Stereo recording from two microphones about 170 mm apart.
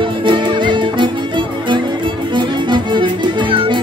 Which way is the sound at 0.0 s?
30° right (ahead or behind).